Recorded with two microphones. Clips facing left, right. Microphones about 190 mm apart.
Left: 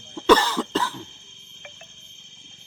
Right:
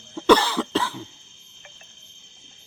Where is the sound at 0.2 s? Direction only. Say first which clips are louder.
Even; 10° right (ahead or behind).